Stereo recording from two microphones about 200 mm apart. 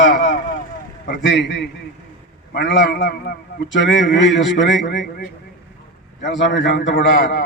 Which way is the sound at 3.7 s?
65° left (ahead or behind).